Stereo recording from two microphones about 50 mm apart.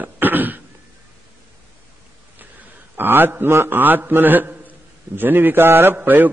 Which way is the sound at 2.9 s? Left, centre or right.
Right.